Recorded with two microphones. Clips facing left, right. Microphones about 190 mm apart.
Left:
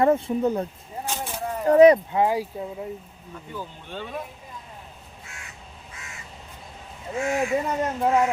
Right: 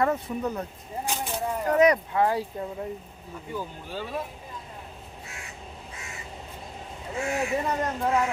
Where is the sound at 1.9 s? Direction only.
15° left (ahead or behind); by 4.2 s 5° right (ahead or behind).